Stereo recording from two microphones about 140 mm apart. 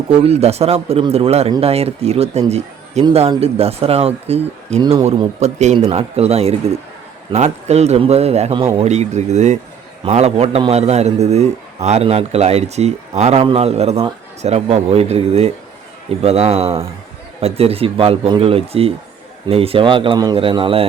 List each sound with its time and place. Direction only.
0.1 s a man's voice: 45° right (ahead or behind)